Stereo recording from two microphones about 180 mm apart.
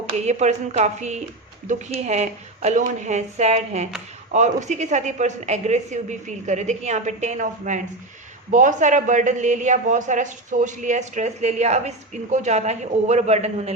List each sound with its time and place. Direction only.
0.1 s a man's voice: 40° right (ahead or behind)